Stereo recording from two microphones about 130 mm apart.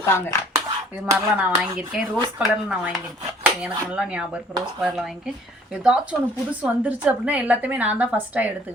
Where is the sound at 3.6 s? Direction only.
10° right (ahead or behind).